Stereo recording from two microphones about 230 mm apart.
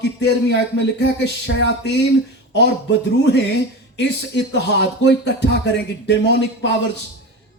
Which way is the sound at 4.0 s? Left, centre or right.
Left.